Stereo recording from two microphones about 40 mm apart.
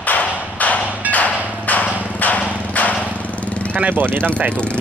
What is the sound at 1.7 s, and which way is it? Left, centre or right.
Vehicle, left.